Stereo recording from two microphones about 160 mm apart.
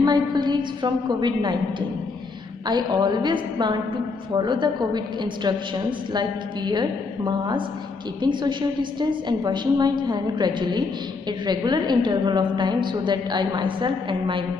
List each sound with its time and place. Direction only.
0.0 s a woman's voice: 25° right (ahead or behind)